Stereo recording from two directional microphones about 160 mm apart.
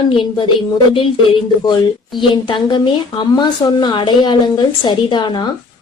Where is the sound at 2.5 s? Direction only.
30° left (ahead or behind).